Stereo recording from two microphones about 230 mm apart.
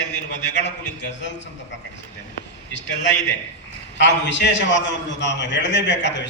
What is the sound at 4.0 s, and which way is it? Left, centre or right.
A man's voice, left.